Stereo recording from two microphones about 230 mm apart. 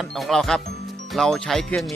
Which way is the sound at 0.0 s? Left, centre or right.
Centre.